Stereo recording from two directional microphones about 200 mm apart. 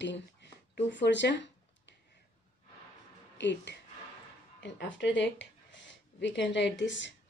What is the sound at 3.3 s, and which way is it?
Speech, 60° left (ahead or behind).